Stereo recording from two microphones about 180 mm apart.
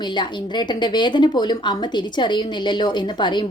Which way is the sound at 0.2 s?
25° left (ahead or behind).